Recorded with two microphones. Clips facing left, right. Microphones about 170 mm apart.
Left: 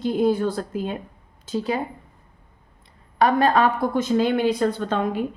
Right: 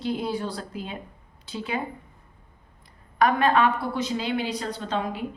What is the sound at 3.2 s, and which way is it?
A woman's voice, 35° left (ahead or behind).